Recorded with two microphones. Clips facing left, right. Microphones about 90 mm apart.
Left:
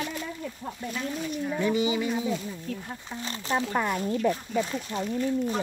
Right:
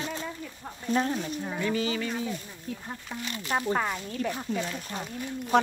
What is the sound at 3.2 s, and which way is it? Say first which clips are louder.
Speech: even; 30° left (ahead or behind).